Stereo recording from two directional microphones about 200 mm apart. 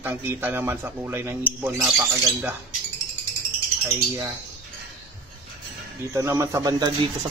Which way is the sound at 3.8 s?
15° right (ahead or behind).